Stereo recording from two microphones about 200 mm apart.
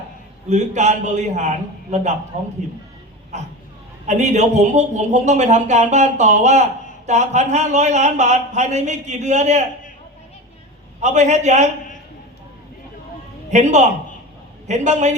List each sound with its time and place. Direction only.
0.4 s a man's voice: 35° right (ahead or behind)
4.0 s a man's voice: 35° right (ahead or behind)
11.0 s a man's voice: 35° right (ahead or behind)
13.5 s a man's voice: 35° right (ahead or behind)